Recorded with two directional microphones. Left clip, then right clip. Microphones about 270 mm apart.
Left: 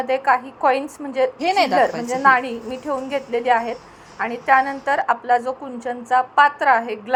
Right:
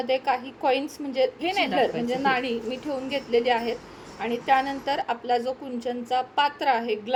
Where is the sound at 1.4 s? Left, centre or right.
Centre.